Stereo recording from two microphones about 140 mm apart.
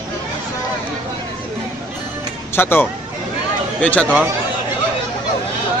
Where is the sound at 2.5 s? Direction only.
15° left (ahead or behind).